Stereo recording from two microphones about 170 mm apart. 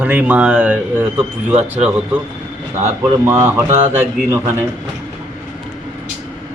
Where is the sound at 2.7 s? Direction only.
10° right (ahead or behind).